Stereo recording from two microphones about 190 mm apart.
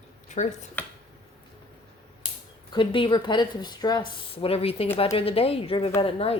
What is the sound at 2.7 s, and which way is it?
Speech, 25° left (ahead or behind).